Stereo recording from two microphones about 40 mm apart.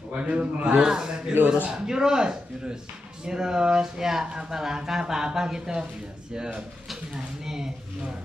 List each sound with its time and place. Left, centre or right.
0.2 s a man's voice: right
0.7 s a man's voice: centre